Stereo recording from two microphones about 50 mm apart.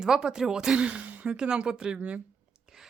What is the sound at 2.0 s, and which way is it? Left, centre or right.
Speech, right.